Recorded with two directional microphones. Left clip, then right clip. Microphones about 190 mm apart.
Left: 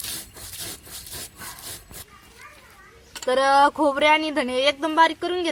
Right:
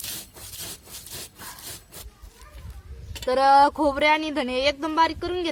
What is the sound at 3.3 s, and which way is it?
Speech, 10° right (ahead or behind).